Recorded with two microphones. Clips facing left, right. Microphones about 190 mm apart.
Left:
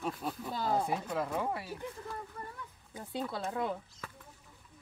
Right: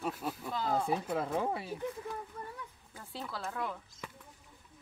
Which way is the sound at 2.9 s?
20° left (ahead or behind).